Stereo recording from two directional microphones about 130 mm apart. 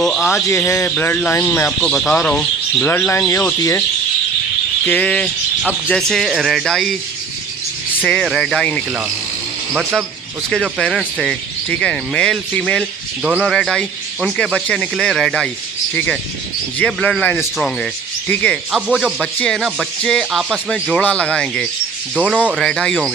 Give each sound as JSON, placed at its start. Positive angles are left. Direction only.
{"t": 0.0, "sound": "speech", "side_deg": 0}
{"t": 0.4, "sound": "a man's voice", "side_deg": 20}
{"t": 2.8, "sound": "speech", "side_deg": 15}
{"t": 4.9, "sound": "speech", "side_deg": 10}
{"t": 8.0, "sound": "speech", "side_deg": 5}
{"t": 10.5, "sound": "speech", "side_deg": 5}
{"t": 16.7, "sound": "a man's voice", "side_deg": 10}
{"t": 18.7, "sound": "a man's voice", "side_deg": 0}
{"t": 22.1, "sound": "speech", "side_deg": -10}
{"t": 22.5, "sound": "speech", "side_deg": 0}